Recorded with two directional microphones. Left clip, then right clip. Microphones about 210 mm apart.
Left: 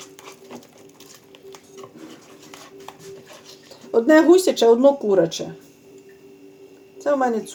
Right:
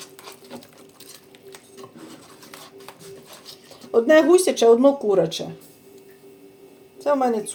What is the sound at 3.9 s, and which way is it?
Speech, 25° left (ahead or behind).